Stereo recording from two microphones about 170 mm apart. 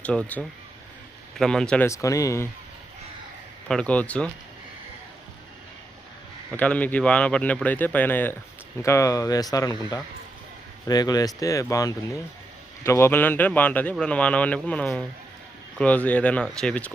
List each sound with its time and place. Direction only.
0.0 s speech: 5° left (ahead or behind)
1.9 s speech: 20° left (ahead or behind)
3.7 s speech: 5° left (ahead or behind)
6.5 s speech: 10° left (ahead or behind)